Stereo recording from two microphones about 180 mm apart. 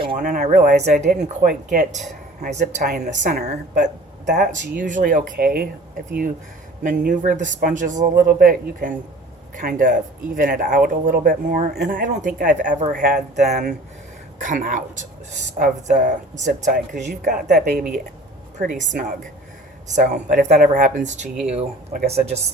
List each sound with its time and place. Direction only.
0.2 s speech: 45° right (ahead or behind)
20.1 s speech: 40° right (ahead or behind)